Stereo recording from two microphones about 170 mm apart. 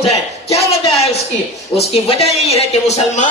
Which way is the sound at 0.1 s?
35° left (ahead or behind).